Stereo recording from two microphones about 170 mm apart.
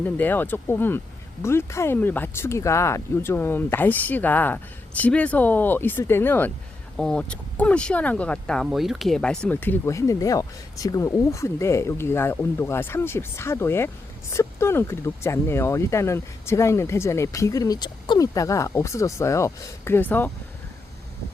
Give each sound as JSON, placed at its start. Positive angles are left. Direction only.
{"t": 0.0, "sound": "speech", "side_deg": 10}